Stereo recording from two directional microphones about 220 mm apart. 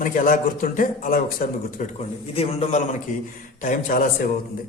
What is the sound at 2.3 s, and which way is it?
A man's voice, 25° left (ahead or behind).